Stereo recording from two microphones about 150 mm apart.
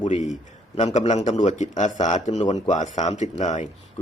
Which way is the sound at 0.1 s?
55° left (ahead or behind).